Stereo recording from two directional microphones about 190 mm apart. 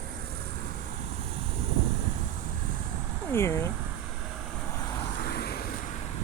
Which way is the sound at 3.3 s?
15° left (ahead or behind).